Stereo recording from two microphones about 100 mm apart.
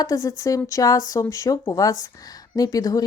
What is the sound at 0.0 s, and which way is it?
A woman's voice, 35° left (ahead or behind).